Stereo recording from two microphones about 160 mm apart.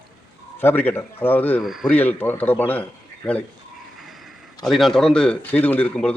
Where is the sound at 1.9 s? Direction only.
10° left (ahead or behind).